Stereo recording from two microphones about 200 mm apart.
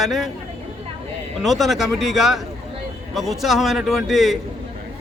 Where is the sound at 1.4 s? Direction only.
Centre (ahead or behind).